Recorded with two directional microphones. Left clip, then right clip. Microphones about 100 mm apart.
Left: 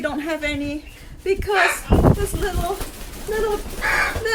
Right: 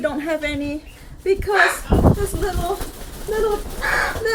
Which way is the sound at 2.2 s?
15° left (ahead or behind).